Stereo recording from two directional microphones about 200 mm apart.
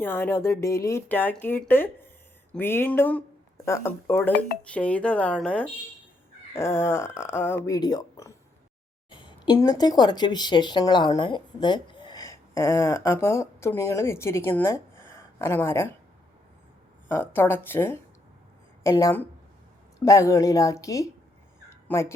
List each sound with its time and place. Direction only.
0.0 s a woman's voice: 10° left (ahead or behind)
17.1 s speech: 10° left (ahead or behind)
21.7 s a sound: 10° left (ahead or behind)